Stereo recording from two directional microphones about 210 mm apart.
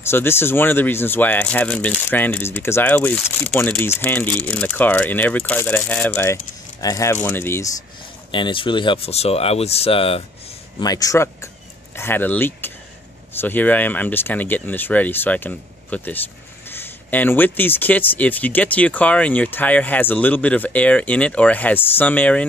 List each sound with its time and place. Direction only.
0.0 s speech: 10° left (ahead or behind)
8.3 s speech: 25° left (ahead or behind); by 22.5 s 5° left (ahead or behind)